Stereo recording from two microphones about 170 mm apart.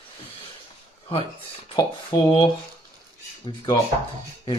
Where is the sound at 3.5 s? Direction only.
25° left (ahead or behind).